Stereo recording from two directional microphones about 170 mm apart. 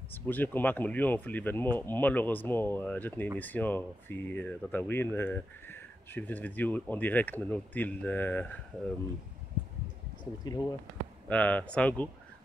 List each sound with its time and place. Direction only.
0.1 s speech: 10° left (ahead or behind)
10.4 s speech: 25° left (ahead or behind)
11.2 s speech: 10° left (ahead or behind)